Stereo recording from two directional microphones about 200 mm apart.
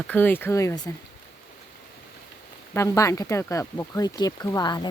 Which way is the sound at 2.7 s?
15° left (ahead or behind).